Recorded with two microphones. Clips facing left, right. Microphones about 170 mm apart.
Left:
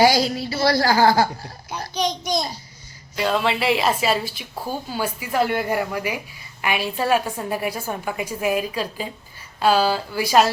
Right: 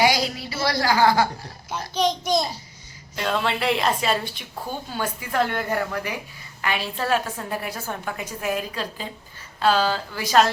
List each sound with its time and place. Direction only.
0.0 s a woman's voice: 35° left (ahead or behind)
2.0 s a child's voice: 5° right (ahead or behind)